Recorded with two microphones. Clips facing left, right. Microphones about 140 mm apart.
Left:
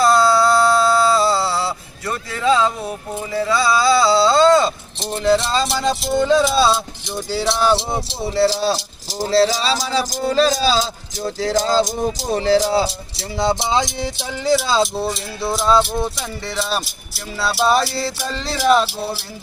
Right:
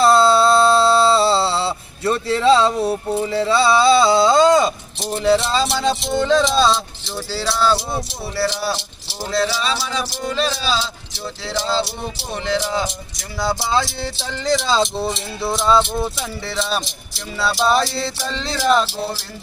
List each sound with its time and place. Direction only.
0.0 s a sound: 25° right (ahead or behind)
5.1 s speech: 5° right (ahead or behind); by 8.4 s 20° left (ahead or behind)
8.4 s speech: 35° left (ahead or behind); by 19.2 s 5° left (ahead or behind)